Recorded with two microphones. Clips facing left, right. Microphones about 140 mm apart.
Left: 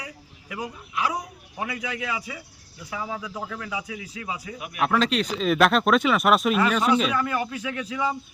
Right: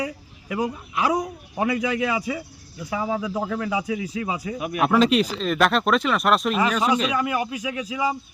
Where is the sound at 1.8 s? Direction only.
20° right (ahead or behind).